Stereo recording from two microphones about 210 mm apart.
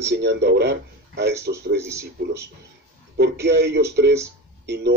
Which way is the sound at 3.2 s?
55° right (ahead or behind).